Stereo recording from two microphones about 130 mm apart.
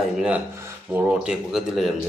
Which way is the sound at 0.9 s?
15° right (ahead or behind).